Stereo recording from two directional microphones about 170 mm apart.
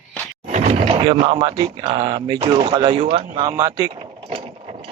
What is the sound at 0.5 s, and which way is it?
Speech, 40° right (ahead or behind).